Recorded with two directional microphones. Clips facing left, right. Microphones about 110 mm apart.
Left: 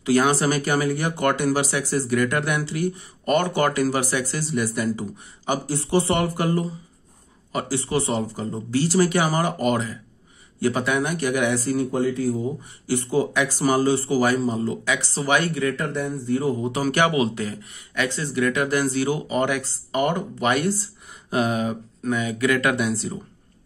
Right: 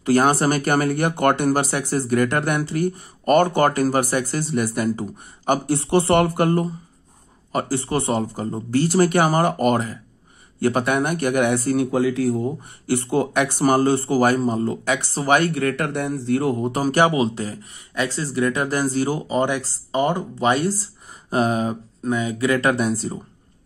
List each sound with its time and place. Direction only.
0.0 s speech: 50° right (ahead or behind); by 16.7 s 75° right (ahead or behind)
16.7 s speech: 35° right (ahead or behind)